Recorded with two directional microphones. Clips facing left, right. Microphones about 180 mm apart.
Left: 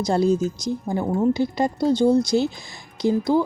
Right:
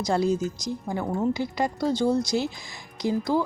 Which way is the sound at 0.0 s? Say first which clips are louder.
Left 4 dB; 30° left (ahead or behind).